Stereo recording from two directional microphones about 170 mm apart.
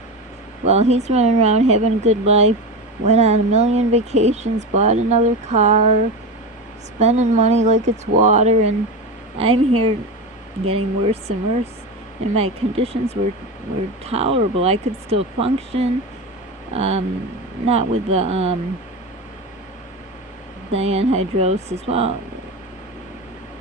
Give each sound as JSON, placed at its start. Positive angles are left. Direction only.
{"t": 0.6, "sound": "speech", "side_deg": -40}
{"t": 7.0, "sound": "speech", "side_deg": -40}
{"t": 20.7, "sound": "speech", "side_deg": -40}